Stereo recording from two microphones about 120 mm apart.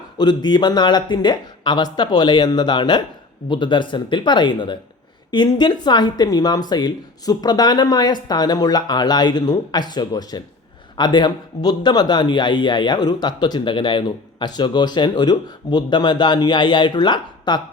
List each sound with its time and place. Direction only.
0.2 s a man's voice: 35° left (ahead or behind)